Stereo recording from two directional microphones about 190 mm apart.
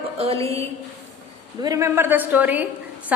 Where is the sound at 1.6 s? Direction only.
15° right (ahead or behind).